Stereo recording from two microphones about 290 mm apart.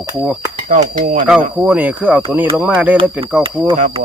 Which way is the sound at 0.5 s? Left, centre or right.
Right.